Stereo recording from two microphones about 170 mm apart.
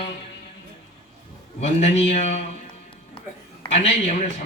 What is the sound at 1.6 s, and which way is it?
Speech, 40° left (ahead or behind).